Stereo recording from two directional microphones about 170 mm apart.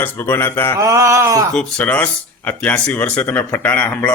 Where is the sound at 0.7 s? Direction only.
15° right (ahead or behind).